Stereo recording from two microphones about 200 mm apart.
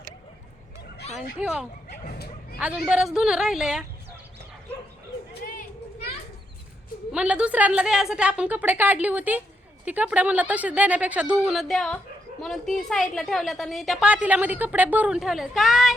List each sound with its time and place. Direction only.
1.4 s a woman's voice: 5° right (ahead or behind)
2.0 s bow-wow: 50° left (ahead or behind)
2.6 s a woman's voice: 5° right (ahead or behind)
5.3 s children playing: 50° left (ahead or behind)
7.1 s a woman's voice: 5° right (ahead or behind)